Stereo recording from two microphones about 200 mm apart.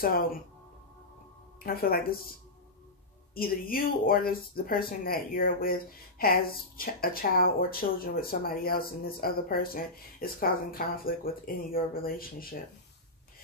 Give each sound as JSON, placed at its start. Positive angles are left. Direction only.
{"t": 0.0, "sound": "speech", "side_deg": 50}
{"t": 1.6, "sound": "speech", "side_deg": 50}
{"t": 3.3, "sound": "speech", "side_deg": 45}